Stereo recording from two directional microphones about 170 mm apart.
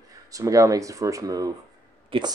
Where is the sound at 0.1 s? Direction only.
20° right (ahead or behind).